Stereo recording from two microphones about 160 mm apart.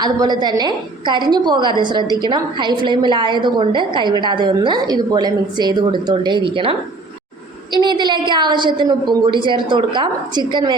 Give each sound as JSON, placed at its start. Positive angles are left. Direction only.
{"t": 0.0, "sound": "a woman's voice", "side_deg": -25}